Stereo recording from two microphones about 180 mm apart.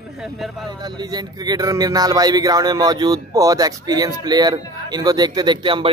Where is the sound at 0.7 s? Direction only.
25° right (ahead or behind).